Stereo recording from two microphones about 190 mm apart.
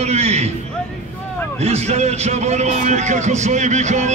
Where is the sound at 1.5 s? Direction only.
35° right (ahead or behind).